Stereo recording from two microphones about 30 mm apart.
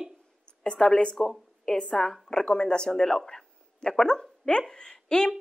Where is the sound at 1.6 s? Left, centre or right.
Centre.